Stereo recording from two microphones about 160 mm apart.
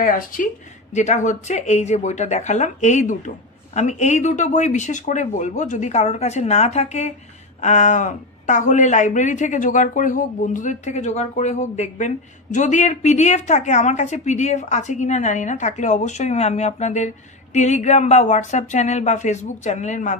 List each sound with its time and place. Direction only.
0.0 s speech: 60° left (ahead or behind)
0.9 s a woman's voice: 45° left (ahead or behind)